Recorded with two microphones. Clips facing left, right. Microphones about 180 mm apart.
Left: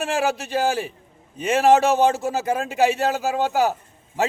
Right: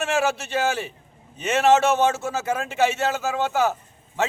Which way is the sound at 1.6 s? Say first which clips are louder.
Left 2 dB; 15° left (ahead or behind).